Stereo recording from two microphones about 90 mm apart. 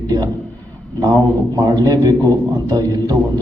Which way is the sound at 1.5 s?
45° right (ahead or behind).